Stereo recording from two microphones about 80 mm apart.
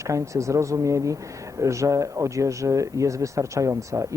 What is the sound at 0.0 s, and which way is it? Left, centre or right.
Speech, right.